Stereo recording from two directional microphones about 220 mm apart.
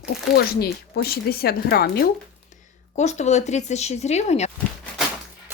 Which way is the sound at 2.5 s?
30° left (ahead or behind).